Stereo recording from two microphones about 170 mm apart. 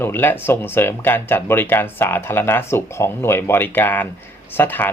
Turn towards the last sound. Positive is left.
turn(degrees=10)  # may be behind; listen again after turning